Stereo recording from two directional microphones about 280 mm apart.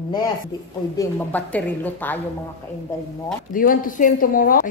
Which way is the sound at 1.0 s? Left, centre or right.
Centre.